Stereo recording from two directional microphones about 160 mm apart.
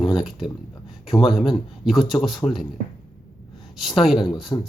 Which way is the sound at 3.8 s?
Centre (ahead or behind).